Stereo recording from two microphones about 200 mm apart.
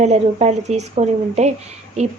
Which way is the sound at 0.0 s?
35° right (ahead or behind).